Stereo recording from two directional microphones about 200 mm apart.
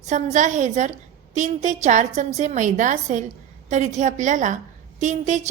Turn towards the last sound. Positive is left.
turn(degrees=-35)  # may be behind; listen again after turning